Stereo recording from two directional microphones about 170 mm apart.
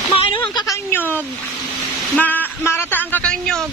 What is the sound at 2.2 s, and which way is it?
Speech, 10° left (ahead or behind).